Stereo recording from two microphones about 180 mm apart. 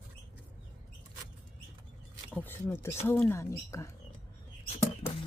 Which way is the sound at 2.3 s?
10° left (ahead or behind).